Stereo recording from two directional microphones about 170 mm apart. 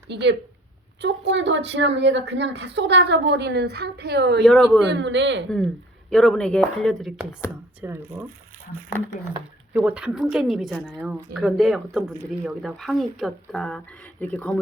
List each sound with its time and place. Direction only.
0.1 s a woman's voice: 90° right
4.4 s speech: 5° left (ahead or behind)
4.9 s a woman's voice: 90° right
5.5 s speech: 5° left (ahead or behind)
7.8 s speech: 10° right (ahead or behind)
9.7 s speech: 5° right (ahead or behind)